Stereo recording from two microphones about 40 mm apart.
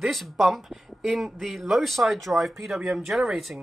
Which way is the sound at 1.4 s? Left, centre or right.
Centre.